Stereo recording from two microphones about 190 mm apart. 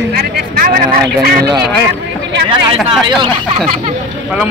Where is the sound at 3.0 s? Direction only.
25° right (ahead or behind).